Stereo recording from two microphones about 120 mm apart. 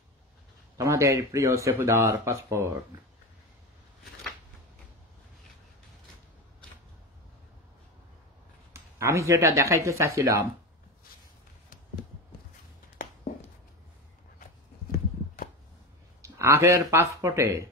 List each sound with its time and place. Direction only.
0.7 s speech: 25° right (ahead or behind)
8.7 s speech: 25° right (ahead or behind)
16.2 s speech: 25° right (ahead or behind)